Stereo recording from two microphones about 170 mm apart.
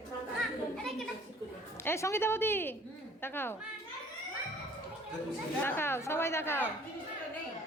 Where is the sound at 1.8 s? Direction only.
15° left (ahead or behind).